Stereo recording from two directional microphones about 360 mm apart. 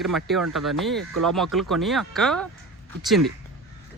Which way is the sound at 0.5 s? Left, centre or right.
Centre.